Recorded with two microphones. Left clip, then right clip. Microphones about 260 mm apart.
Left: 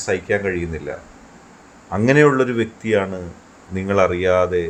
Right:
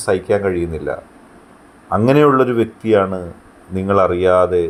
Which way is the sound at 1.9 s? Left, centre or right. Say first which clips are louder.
Right 2 dB; centre.